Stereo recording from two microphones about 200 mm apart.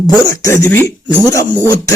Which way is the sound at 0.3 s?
15° left (ahead or behind).